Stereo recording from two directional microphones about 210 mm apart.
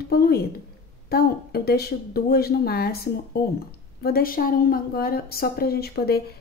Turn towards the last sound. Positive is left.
turn(degrees=50)  # may be behind; listen again after turning